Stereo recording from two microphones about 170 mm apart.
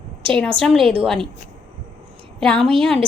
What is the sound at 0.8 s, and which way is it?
Speech, 35° right (ahead or behind).